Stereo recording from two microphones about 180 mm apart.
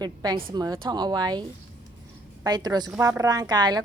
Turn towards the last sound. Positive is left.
turn(degrees=-20)  # may be behind; listen again after turning